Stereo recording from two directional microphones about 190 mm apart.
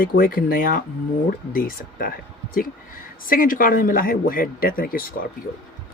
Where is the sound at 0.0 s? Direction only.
50° left (ahead or behind).